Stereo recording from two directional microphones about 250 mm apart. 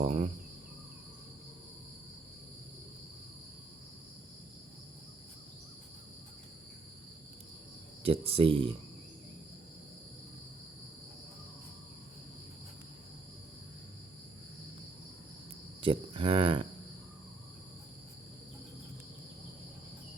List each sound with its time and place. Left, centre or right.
0.0 s insect: right
8.0 s speech: right
15.8 s cricket: right